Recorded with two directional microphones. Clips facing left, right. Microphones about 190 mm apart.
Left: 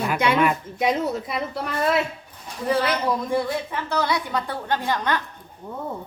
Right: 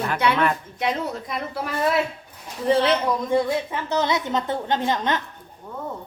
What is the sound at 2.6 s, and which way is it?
A woman's voice, 25° right (ahead or behind).